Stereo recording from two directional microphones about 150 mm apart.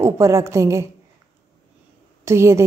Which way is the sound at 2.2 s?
20° right (ahead or behind).